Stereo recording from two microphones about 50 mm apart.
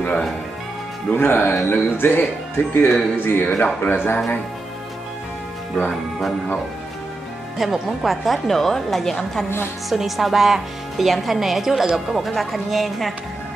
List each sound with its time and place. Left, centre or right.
1.1 s speech: left
3.5 s a man's voice: left
3.9 s speech: left
7.5 s speech: centre
9.8 s speech: centre